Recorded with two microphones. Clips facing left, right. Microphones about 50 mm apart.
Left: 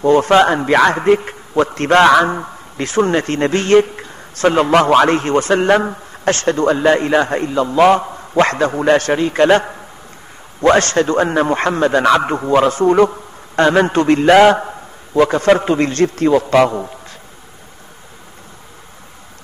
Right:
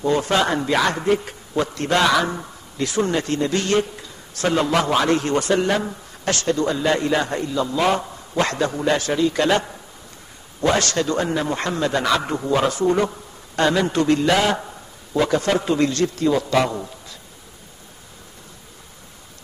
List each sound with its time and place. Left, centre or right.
0.0 s a man's voice: left